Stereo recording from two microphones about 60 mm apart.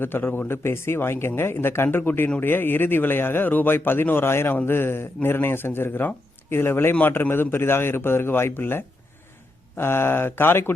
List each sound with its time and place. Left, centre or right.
0.0 s speech: left